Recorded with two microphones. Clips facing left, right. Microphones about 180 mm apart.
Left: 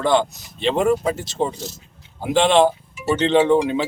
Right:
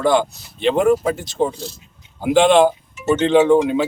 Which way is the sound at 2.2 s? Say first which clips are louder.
Right 3 dB; centre (ahead or behind).